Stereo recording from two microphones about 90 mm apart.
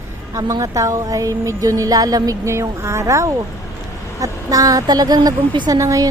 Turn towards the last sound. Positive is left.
turn(degrees=-40)  # may be behind; listen again after turning